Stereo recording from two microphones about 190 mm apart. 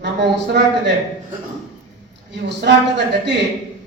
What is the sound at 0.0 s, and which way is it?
Speech, 65° right (ahead or behind).